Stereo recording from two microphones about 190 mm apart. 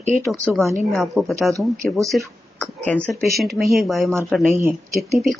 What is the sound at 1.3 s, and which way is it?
Speech, 15° right (ahead or behind).